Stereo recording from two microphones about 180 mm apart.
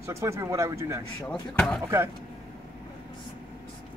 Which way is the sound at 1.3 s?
5° left (ahead or behind).